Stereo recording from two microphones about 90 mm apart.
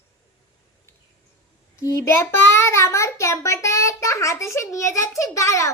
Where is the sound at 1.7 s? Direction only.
30° left (ahead or behind).